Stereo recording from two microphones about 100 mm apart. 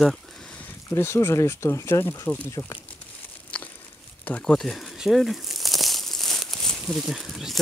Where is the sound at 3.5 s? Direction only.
15° left (ahead or behind).